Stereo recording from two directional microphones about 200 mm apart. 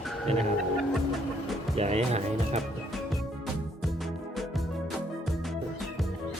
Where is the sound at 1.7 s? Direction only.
30° right (ahead or behind).